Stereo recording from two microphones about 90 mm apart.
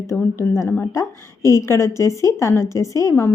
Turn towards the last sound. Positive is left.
turn(degrees=30)  # may be behind; listen again after turning